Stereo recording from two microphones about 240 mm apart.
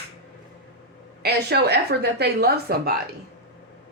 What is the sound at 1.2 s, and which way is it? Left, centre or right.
A woman's voice, right.